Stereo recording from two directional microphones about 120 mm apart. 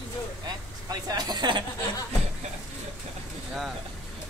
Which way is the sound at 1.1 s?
35° right (ahead or behind).